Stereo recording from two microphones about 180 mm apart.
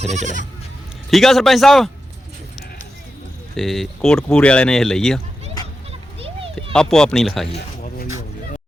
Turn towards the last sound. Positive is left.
turn(degrees=5)  # may be behind; listen again after turning